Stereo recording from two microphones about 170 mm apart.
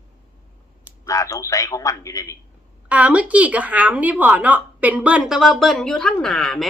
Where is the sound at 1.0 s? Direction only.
20° left (ahead or behind).